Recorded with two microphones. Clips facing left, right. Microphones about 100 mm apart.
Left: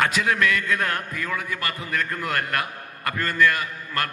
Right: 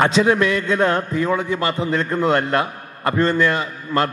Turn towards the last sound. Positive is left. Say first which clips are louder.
# right 7 dB
turn(degrees=-25)  # may be behind; listen again after turning